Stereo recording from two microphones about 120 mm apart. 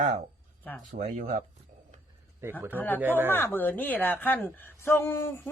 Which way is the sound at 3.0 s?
15° right (ahead or behind).